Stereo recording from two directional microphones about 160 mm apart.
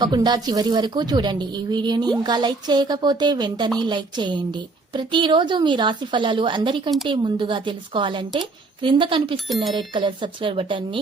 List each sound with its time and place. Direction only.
0.0 s a woman's voice: 25° right (ahead or behind)